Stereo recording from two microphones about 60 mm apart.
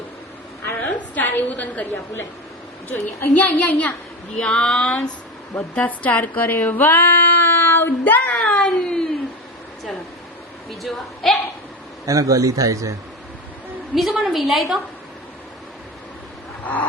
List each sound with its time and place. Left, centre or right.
0.7 s a sound: left
3.3 s speech: left
4.4 s a sound: centre
5.7 s speech: left
6.7 s female singing: left
8.4 s a sound: centre
10.7 s a woman's voice: centre
12.0 s speech: right
13.9 s a woman's voice: centre